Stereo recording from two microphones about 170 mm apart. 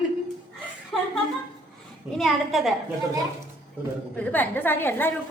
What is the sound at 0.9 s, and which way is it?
Speech, centre (ahead or behind).